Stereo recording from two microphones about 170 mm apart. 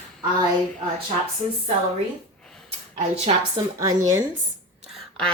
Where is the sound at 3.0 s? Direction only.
40° right (ahead or behind).